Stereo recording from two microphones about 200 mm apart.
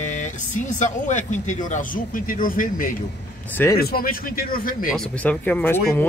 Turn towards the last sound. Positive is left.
turn(degrees=10)  # may be behind; listen again after turning